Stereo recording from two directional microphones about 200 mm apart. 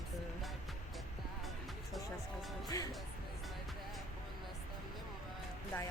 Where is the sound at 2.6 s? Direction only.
20° left (ahead or behind).